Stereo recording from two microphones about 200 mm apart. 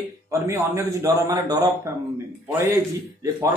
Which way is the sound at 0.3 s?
15° right (ahead or behind).